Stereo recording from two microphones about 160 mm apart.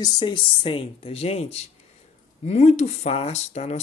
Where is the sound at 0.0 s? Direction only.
30° left (ahead or behind).